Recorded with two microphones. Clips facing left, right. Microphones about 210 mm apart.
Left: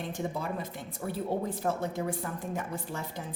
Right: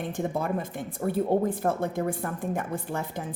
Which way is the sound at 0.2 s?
50° right (ahead or behind).